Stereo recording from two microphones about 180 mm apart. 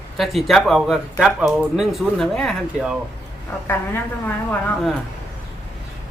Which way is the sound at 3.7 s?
10° left (ahead or behind).